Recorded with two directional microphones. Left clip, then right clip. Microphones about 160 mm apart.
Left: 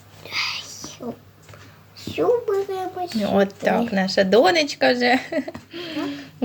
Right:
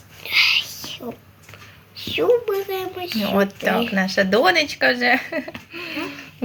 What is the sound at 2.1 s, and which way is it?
Speech, 5° right (ahead or behind).